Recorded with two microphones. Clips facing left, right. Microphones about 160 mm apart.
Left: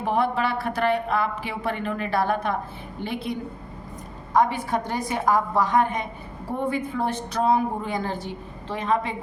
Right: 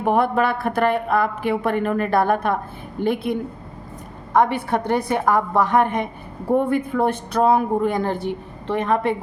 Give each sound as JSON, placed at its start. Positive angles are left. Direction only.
{"t": 0.0, "sound": "speech", "side_deg": -50}
{"t": 4.4, "sound": "speech", "side_deg": -60}